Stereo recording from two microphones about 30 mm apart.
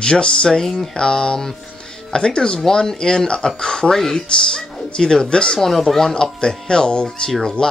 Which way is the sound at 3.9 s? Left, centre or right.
Centre.